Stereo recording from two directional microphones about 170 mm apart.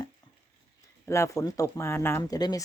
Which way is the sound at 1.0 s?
15° left (ahead or behind).